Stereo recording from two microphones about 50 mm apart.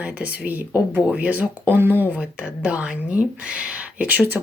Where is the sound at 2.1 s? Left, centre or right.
Right.